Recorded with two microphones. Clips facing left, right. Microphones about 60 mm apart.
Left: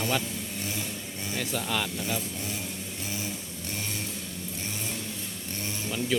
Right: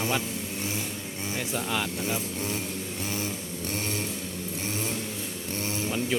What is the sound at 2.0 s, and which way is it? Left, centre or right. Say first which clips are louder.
Speech: right 1 dB; right.